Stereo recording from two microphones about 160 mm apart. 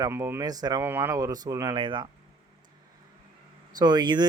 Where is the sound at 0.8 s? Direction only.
15° right (ahead or behind); by 2.1 s 30° right (ahead or behind).